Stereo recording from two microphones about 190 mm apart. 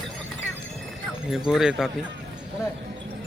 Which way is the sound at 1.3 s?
Centre (ahead or behind).